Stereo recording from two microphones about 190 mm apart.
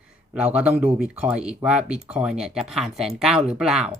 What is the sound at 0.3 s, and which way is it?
Speech, 5° right (ahead or behind).